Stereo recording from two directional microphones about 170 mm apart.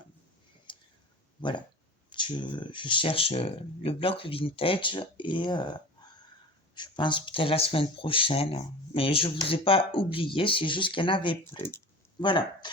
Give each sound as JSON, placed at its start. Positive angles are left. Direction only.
{"t": 0.7, "sound": "a sound", "side_deg": 30}
{"t": 1.4, "sound": "speech", "side_deg": 25}
{"t": 11.5, "sound": "speech", "side_deg": 15}
{"t": 12.2, "sound": "speech", "side_deg": 30}